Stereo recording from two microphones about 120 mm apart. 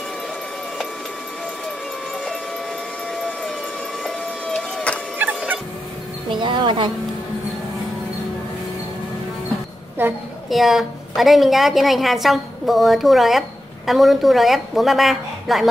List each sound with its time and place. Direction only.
3.2 s a sound: 5° left (ahead or behind)
4.0 s vehicle: 5° left (ahead or behind)
6.2 s music: 40° right (ahead or behind)
10.5 s a woman's voice: centre (ahead or behind)